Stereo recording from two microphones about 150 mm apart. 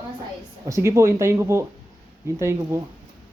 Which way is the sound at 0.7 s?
20° right (ahead or behind).